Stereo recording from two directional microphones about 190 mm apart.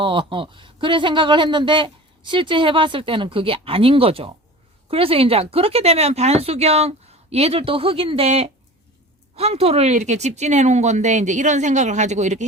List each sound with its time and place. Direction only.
0.0 s a woman's voice: 25° right (ahead or behind)